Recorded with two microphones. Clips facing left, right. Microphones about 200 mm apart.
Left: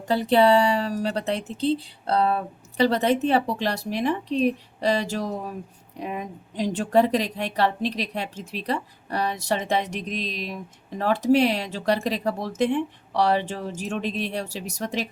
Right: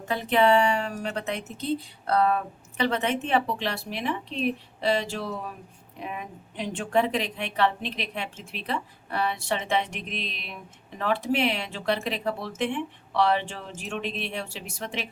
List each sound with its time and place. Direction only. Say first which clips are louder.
0.0 s speech: left 4 dB; 35° left (ahead or behind)